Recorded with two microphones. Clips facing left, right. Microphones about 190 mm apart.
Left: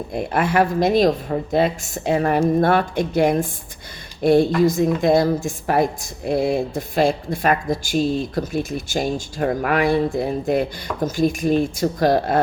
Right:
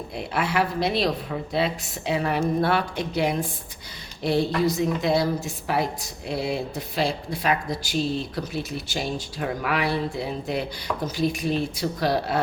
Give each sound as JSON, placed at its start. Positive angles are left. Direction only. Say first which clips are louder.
{"t": 0.1, "sound": "a woman's voice", "louder": "left 6 dB", "side_deg": 50}